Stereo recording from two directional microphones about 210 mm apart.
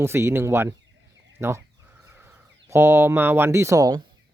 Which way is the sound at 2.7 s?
10° right (ahead or behind).